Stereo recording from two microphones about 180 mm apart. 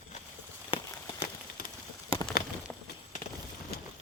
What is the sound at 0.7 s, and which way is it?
Horse, 30° left (ahead or behind).